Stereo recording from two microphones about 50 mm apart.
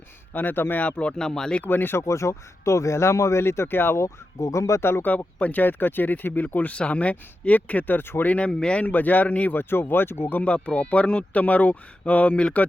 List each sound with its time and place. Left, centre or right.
0.3 s speech: left
0.8 s speech: left
1.2 s speech: centre
1.6 s speech: left
2.0 s speech: left
3.4 s speech: left
3.9 s speech: left
4.8 s speech: left
5.0 s speech: left
8.2 s speech: left
8.8 s speech: left
9.5 s speech: left
10.4 s speech: left